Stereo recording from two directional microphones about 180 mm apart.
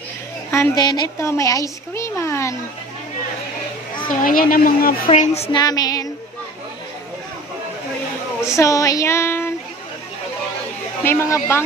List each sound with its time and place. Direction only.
0.5 s a woman's voice: 20° left (ahead or behind)
4.1 s a woman's voice: 50° left (ahead or behind)
5.0 s a woman's voice: 40° left (ahead or behind)
5.6 s female singing: 20° left (ahead or behind)
8.5 s child singing: 15° left (ahead or behind)
11.1 s speech: 15° left (ahead or behind)